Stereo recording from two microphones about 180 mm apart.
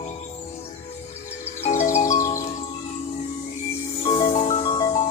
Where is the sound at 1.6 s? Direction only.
45° left (ahead or behind).